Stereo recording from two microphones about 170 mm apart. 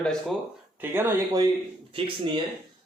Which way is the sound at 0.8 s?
15° right (ahead or behind).